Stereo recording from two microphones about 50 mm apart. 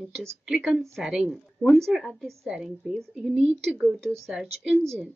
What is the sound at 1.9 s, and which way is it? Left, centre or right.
A woman's voice, centre.